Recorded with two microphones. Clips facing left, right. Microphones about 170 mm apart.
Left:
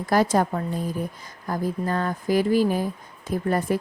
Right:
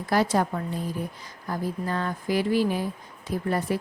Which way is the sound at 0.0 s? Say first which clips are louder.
Left 3 dB; 45° left (ahead or behind).